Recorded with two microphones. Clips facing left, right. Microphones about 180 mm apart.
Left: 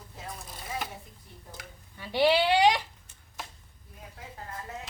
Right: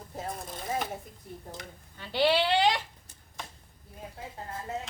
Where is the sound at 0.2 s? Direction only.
50° right (ahead or behind).